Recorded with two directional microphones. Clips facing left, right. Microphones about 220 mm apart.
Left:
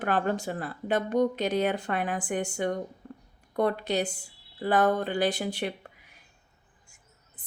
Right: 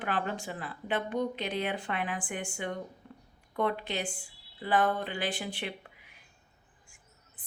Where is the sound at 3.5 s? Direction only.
40° left (ahead or behind).